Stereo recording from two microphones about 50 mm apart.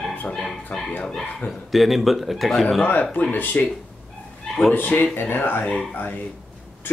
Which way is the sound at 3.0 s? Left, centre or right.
Left.